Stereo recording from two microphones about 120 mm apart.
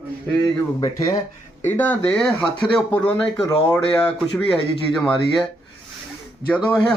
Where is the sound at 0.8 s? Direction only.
30° left (ahead or behind).